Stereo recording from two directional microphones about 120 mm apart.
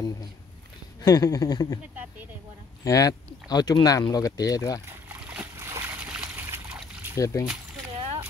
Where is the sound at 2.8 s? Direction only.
30° left (ahead or behind).